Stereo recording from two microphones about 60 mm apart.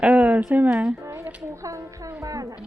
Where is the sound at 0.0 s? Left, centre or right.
Right.